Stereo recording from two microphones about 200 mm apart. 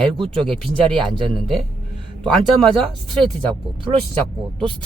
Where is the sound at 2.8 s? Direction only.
5° left (ahead or behind).